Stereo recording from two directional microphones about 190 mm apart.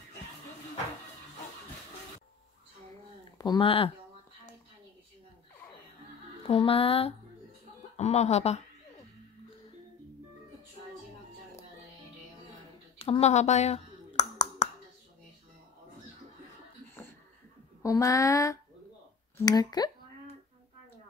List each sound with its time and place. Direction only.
3.3 s speech: 25° left (ahead or behind)
6.4 s speech: 30° left (ahead or behind)
13.0 s a sound: 35° left (ahead or behind)
17.8 s speech: 15° left (ahead or behind)